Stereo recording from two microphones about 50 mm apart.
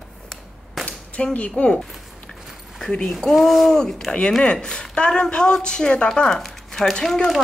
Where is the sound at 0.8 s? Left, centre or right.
Left.